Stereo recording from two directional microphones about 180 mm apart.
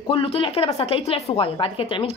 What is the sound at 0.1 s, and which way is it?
A woman's voice, 30° left (ahead or behind).